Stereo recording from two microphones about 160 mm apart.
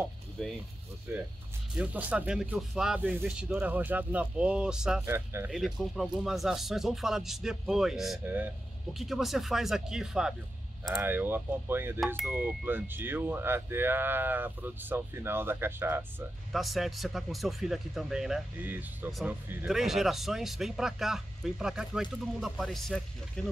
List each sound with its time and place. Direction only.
0.4 s speech: 5° left (ahead or behind)
1.8 s speech: 10° right (ahead or behind)
5.0 s speech: 15° right (ahead or behind)
5.5 s speech: centre (ahead or behind)
8.2 s speech: 10° right (ahead or behind)
8.9 s speech: centre (ahead or behind)
16.5 s speech: centre (ahead or behind)